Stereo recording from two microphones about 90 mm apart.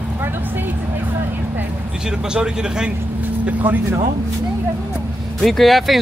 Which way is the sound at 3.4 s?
20° right (ahead or behind).